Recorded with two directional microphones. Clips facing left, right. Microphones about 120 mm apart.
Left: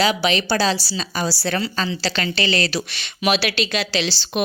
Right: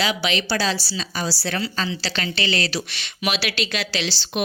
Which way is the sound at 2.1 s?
55° left (ahead or behind).